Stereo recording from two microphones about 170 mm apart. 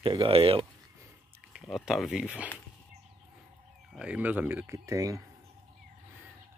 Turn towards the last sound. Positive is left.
turn(degrees=-20)  # may be behind; listen again after turning